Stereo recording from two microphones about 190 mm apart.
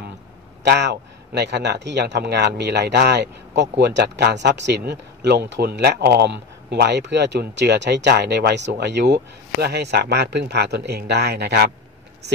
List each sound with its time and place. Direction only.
0.7 s speech: 60° right (ahead or behind)